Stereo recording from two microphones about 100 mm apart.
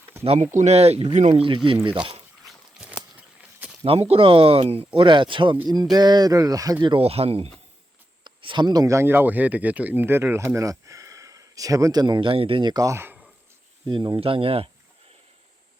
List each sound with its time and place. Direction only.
0.7 s speech: 90° right; by 2.2 s 65° right (ahead or behind)
2.5 s a sound: 10° right (ahead or behind)
3.8 s speech: 80° right
4.9 s speech: 55° right (ahead or behind)
5.6 s speech: 45° right (ahead or behind)
7.0 s speech: 85° right
8.2 s speech: 55° right (ahead or behind)
12.8 s speech: 25° right (ahead or behind)
13.8 s speech: 50° right (ahead or behind)
14.2 s speech: 70° right (ahead or behind)